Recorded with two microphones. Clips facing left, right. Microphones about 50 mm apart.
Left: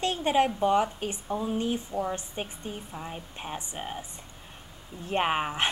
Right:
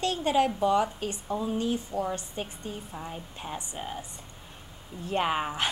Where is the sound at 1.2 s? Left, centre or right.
Centre.